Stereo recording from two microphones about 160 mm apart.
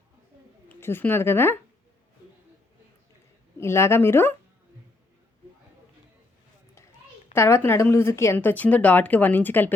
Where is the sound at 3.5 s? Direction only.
15° left (ahead or behind).